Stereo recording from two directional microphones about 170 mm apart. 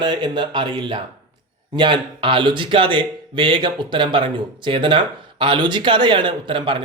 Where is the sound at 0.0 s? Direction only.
25° right (ahead or behind).